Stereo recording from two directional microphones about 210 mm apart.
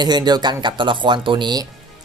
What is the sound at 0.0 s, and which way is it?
Speech, 20° right (ahead or behind).